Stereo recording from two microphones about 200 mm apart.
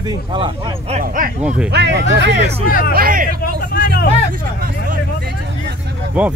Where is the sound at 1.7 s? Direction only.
60° right (ahead or behind).